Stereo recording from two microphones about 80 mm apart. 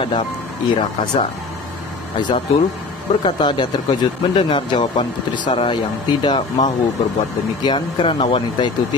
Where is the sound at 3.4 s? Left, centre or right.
Left.